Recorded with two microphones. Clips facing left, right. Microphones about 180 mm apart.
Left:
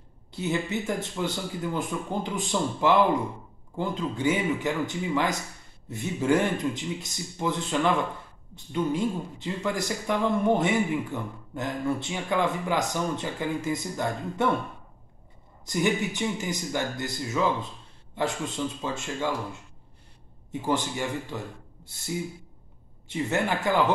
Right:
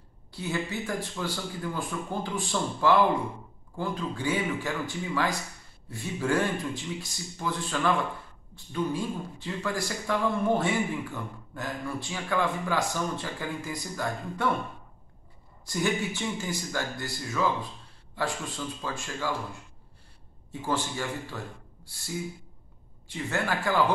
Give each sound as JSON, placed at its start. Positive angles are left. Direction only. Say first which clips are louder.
{"t": 0.3, "sound": "speech", "louder": "left 4 dB", "side_deg": 20}
{"t": 15.6, "sound": "speech", "louder": "left 3 dB", "side_deg": 20}
{"t": 20.6, "sound": "speech", "louder": "left 3 dB", "side_deg": 20}